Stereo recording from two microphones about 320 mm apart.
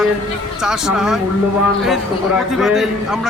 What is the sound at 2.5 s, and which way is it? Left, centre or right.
Speech, centre.